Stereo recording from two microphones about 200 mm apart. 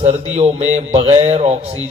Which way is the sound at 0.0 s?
35° right (ahead or behind).